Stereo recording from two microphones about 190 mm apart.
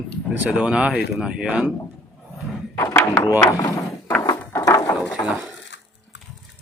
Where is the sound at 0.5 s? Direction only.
5° right (ahead or behind).